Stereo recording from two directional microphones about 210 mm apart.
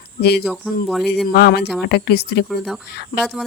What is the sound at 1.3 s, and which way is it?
Speech, 50° left (ahead or behind).